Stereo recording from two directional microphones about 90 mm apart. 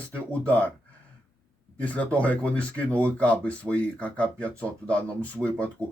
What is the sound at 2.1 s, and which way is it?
Speech, 15° left (ahead or behind).